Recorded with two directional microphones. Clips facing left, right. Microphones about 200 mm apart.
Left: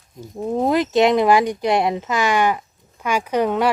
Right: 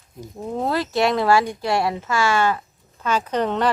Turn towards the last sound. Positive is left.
turn(degrees=10)  # may be behind; listen again after turning